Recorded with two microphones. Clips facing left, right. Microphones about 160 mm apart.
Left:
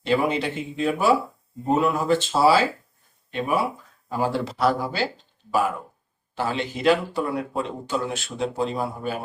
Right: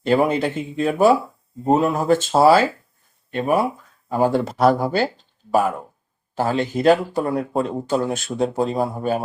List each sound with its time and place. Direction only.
0.0 s speech: 45° right (ahead or behind)